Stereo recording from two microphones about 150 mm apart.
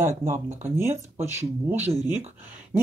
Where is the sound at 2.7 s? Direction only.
15° right (ahead or behind).